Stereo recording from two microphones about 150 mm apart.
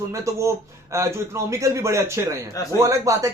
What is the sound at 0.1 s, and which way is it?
Speech, 20° right (ahead or behind).